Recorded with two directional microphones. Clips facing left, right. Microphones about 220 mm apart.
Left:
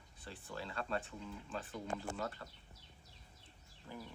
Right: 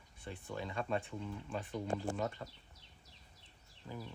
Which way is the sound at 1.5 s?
10° right (ahead or behind).